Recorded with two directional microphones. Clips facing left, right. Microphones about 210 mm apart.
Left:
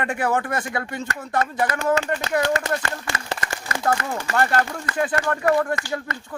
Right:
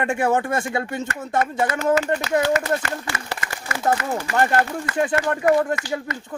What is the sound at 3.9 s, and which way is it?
A man's voice, 20° right (ahead or behind).